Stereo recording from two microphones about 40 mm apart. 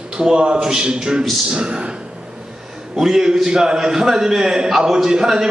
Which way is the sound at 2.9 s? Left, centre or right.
Centre.